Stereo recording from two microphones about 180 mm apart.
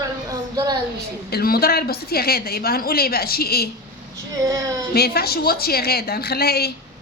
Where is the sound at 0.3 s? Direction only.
20° right (ahead or behind).